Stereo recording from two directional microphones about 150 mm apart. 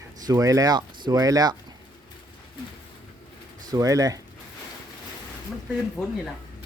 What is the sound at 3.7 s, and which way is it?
Speech, 25° right (ahead or behind).